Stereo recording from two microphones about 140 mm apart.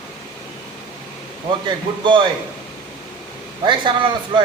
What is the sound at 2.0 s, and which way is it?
Speech, 35° right (ahead or behind).